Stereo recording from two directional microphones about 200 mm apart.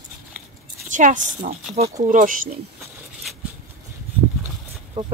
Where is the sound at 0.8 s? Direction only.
40° right (ahead or behind).